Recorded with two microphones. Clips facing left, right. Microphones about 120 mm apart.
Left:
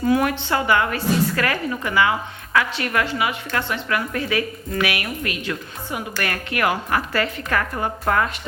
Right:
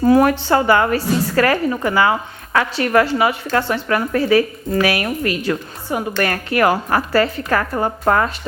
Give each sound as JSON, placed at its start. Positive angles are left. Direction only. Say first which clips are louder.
{"t": 0.0, "sound": "a woman's voice", "louder": "right 6 dB", "side_deg": -40}